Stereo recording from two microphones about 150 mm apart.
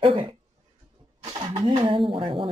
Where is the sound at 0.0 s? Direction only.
35° right (ahead or behind).